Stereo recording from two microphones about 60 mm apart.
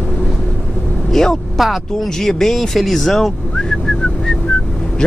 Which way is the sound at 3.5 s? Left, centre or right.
Centre.